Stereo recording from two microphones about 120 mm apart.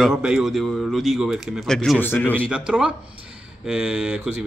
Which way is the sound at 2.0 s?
15° left (ahead or behind).